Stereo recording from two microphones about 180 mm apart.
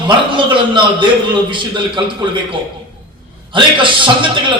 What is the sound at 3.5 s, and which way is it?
Speech, 30° right (ahead or behind).